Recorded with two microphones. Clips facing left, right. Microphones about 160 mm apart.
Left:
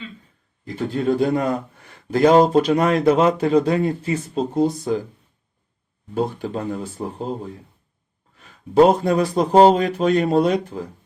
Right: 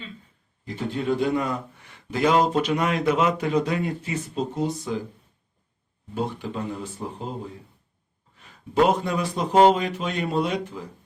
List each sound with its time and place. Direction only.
0.9 s speech: 40° left (ahead or behind)
6.1 s speech: 40° left (ahead or behind)
8.7 s speech: 35° left (ahead or behind)